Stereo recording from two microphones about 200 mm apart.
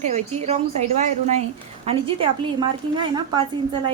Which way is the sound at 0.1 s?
35° right (ahead or behind).